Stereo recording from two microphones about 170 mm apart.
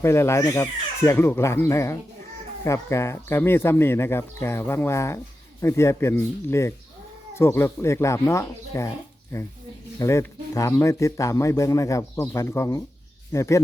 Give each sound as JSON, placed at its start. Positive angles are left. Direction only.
{"t": 0.0, "sound": "speech", "side_deg": 15}
{"t": 10.0, "sound": "speech", "side_deg": 20}